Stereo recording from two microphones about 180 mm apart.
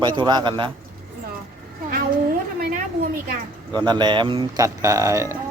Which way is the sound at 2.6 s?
50° right (ahead or behind).